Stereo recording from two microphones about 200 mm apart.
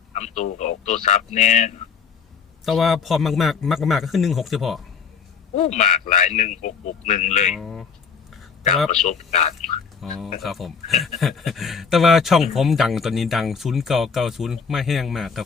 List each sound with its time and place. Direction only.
0.1 s a man's voice: 35° left (ahead or behind)
2.6 s speech: centre (ahead or behind)
5.5 s a man's voice: 35° left (ahead or behind)
7.5 s speech: centre (ahead or behind)
9.0 s a man's voice: 35° left (ahead or behind)
10.0 s speech: centre (ahead or behind)